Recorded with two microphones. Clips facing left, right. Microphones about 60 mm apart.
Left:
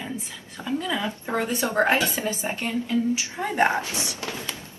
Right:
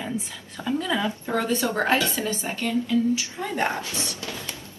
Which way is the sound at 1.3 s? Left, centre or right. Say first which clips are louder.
Left 1 dB; left.